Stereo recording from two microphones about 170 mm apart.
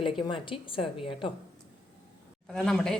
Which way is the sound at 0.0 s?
30° left (ahead or behind).